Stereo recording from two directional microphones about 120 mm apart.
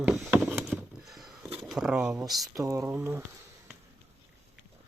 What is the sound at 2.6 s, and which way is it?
Speech, 25° right (ahead or behind).